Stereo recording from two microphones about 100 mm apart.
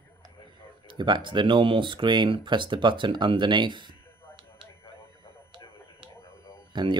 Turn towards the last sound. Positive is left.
turn(degrees=-50)  # may be behind; listen again after turning